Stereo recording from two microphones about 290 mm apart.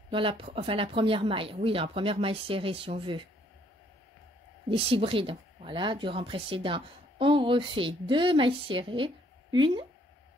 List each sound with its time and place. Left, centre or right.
0.1 s speech: centre
4.6 s a woman's voice: centre